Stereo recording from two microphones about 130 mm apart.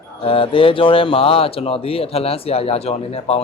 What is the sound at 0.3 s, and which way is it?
Speech, 45° left (ahead or behind).